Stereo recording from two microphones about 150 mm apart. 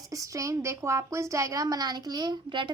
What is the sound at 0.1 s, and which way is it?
A child's voice, 20° right (ahead or behind).